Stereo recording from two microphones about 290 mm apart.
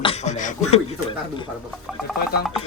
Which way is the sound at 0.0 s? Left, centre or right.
Left.